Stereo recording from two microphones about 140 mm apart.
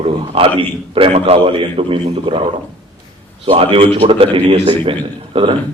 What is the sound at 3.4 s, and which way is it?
A man's voice, 40° right (ahead or behind).